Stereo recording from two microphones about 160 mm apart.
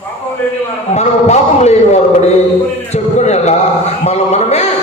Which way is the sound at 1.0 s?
45° left (ahead or behind).